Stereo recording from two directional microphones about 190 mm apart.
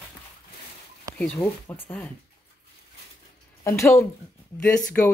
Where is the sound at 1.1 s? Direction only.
5° left (ahead or behind).